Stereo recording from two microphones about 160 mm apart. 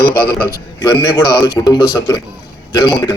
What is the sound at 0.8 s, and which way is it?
A man's voice, 30° left (ahead or behind).